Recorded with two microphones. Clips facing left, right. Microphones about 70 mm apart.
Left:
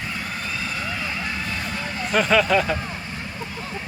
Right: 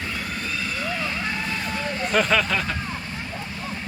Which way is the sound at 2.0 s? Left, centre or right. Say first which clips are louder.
Left 3 dB; centre.